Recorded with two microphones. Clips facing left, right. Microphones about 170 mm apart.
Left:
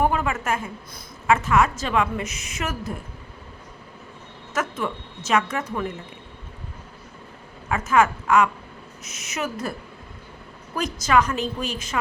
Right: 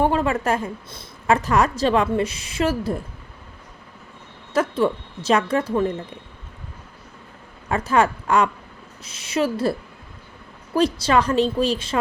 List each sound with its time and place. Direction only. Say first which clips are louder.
0.0 s a woman's voice: right 3 dB; 30° right (ahead or behind)
4.5 s a woman's voice: right 7 dB; 30° right (ahead or behind)
7.7 s a woman's voice: right 1 dB; 35° right (ahead or behind)
10.8 s a woman's voice: right 3 dB; 30° right (ahead or behind)